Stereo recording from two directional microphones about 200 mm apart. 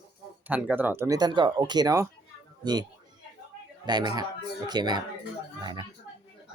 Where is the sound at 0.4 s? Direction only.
10° right (ahead or behind).